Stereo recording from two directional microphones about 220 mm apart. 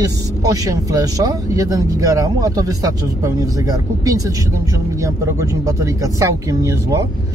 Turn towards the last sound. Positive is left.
turn(degrees=-15)  # may be behind; listen again after turning